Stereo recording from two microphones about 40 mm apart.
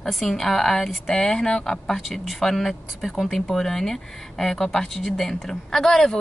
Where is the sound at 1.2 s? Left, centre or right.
Centre.